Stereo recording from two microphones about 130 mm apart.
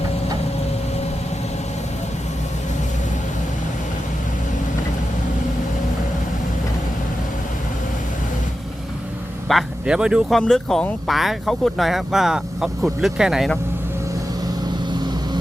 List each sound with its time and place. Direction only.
9.5 s speech: 5° right (ahead or behind)